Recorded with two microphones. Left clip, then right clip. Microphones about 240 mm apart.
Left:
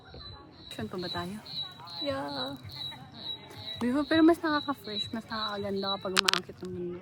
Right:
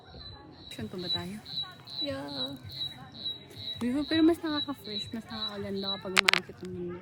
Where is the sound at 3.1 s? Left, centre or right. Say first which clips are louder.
Right 2 dB; centre.